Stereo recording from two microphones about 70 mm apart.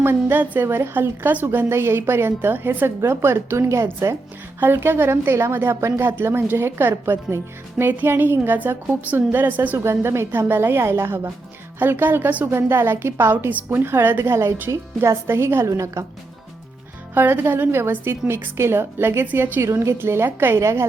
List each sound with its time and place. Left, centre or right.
0.0 s a woman's voice: right
9.7 s a woman's voice: right
17.2 s a woman's voice: right
19.6 s a woman's voice: right